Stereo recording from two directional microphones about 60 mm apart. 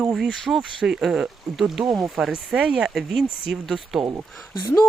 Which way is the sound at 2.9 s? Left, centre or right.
Centre.